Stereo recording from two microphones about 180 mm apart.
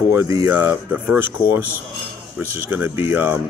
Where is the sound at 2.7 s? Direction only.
10° right (ahead or behind).